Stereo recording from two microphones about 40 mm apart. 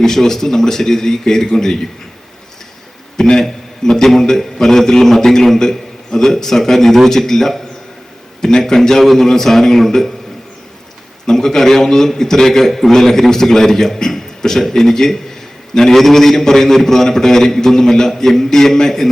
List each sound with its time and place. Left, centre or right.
0.0 s a man's voice: centre
3.2 s a man's voice: centre
11.3 s a man's voice: centre